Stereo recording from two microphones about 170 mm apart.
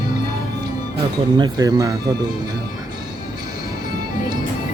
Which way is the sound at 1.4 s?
20° right (ahead or behind).